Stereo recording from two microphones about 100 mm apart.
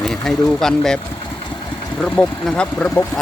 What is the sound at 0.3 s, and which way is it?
Speech, 5° left (ahead or behind).